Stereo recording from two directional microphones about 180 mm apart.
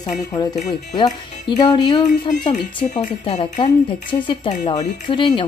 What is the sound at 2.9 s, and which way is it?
Speech, 40° left (ahead or behind).